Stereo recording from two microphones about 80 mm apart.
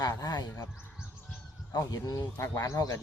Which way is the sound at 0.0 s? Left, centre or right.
Left.